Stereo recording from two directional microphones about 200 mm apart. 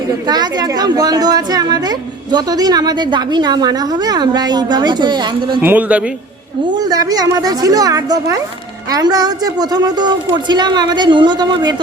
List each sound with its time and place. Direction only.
0.3 s a woman's voice: 20° right (ahead or behind)
5.6 s speech: 10° right (ahead or behind)
6.7 s a woman's voice: 20° right (ahead or behind)